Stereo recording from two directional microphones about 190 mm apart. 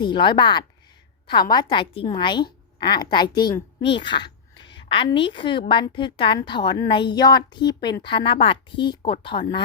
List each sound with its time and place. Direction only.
0.0 s a woman's voice: 25° left (ahead or behind)